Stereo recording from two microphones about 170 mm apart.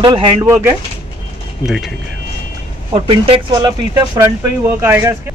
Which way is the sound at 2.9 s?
35° right (ahead or behind).